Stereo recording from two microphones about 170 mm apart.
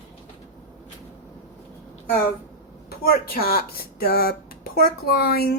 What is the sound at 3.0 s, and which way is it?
Speech, 60° left (ahead or behind).